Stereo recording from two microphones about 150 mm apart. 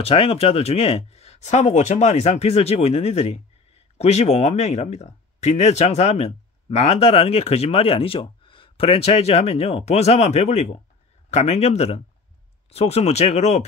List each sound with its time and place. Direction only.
0.0 s speech: 40° left (ahead or behind)